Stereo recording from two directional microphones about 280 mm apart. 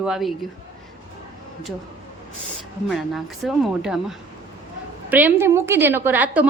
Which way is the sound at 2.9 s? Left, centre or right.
Centre.